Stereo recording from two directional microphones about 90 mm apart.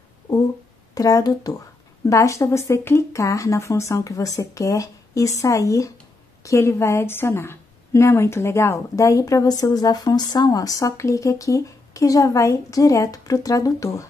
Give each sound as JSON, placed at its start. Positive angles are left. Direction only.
{"t": 0.9, "sound": "speech", "side_deg": 40}